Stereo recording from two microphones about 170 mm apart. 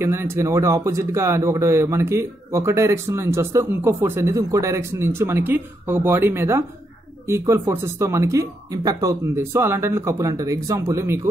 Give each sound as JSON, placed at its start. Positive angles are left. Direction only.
{"t": 0.0, "sound": "speech", "side_deg": -15}